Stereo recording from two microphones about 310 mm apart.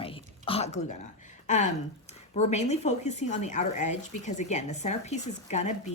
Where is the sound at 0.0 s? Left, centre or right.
Centre.